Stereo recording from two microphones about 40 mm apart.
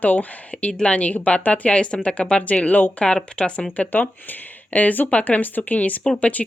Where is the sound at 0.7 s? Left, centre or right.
Left.